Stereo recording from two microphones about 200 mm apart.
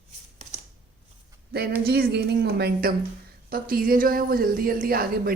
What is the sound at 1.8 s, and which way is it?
A woman's voice, 55° right (ahead or behind).